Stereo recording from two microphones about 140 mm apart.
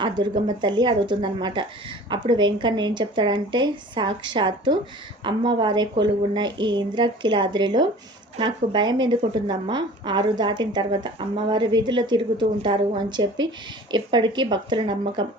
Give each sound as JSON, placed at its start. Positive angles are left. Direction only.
{"t": 0.0, "sound": "speech", "side_deg": -35}